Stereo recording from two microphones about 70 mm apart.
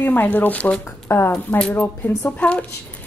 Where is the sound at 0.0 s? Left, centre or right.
Left.